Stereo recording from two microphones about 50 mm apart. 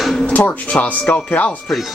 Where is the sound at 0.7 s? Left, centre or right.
Left.